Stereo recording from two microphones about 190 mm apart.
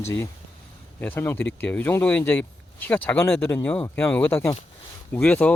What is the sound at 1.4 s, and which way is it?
Speech, 70° left (ahead or behind).